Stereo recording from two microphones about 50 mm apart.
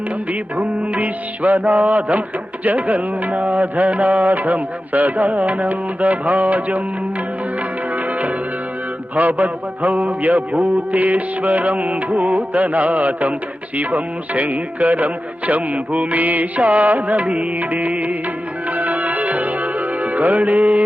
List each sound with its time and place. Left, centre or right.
0.5 s music: right
9.1 s music: right